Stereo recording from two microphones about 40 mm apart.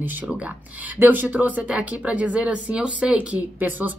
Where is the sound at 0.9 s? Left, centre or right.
Right.